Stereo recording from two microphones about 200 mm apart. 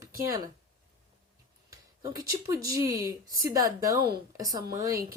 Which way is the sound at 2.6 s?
15° right (ahead or behind).